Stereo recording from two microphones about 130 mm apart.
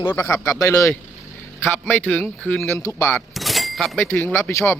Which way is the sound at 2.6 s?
20° left (ahead or behind).